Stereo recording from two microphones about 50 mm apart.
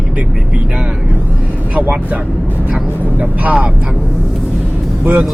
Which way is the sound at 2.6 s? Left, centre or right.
Right.